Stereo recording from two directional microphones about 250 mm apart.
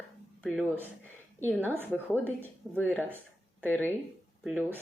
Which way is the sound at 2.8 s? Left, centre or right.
Centre.